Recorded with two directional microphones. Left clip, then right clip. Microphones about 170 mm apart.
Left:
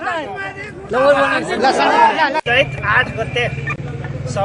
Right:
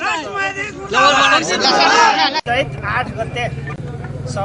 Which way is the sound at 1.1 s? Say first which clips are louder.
Right 2 dB; 25° right (ahead or behind).